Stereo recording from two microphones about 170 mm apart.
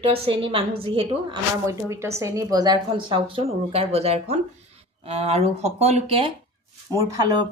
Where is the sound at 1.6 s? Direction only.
15° right (ahead or behind); by 6.3 s 35° right (ahead or behind).